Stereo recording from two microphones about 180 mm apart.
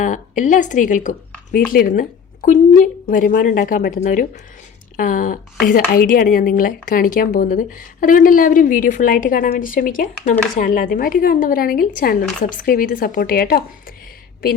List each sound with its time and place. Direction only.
0.0 s speech: 45° left (ahead or behind)